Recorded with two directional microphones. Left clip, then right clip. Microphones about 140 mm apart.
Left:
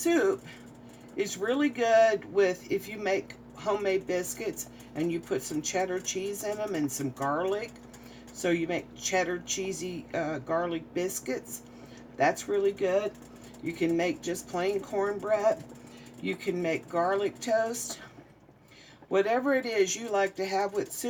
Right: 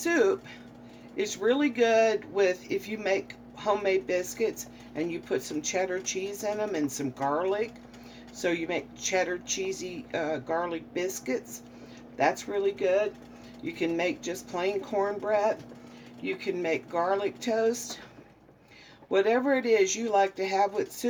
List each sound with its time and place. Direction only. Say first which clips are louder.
0.0 s speech: right 1 dB; 30° right (ahead or behind)
19.1 s speech: right 1 dB; 35° right (ahead or behind)